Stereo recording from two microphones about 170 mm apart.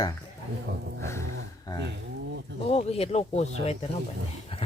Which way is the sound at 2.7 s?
40° left (ahead or behind).